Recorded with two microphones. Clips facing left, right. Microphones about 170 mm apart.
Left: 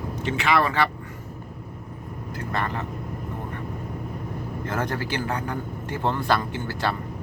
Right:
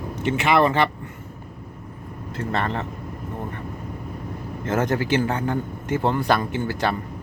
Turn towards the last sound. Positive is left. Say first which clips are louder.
# right 4 dB
turn(degrees=-20)  # may be behind; listen again after turning